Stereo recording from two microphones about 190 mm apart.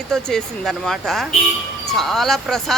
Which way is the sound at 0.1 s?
5° left (ahead or behind).